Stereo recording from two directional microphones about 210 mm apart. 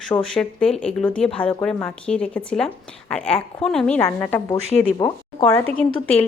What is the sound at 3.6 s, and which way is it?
A woman's voice, 5° left (ahead or behind).